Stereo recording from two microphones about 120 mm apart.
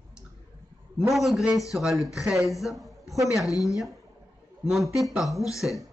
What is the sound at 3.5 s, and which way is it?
Speech, 30° left (ahead or behind).